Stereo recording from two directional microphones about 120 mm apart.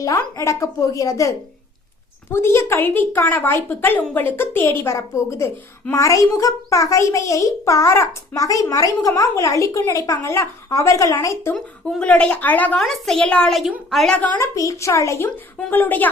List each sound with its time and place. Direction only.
0.0 s speech: 30° left (ahead or behind)
11.5 s speech: 5° left (ahead or behind)
12.8 s a woman's voice: 5° left (ahead or behind)
14.2 s speech: 25° left (ahead or behind)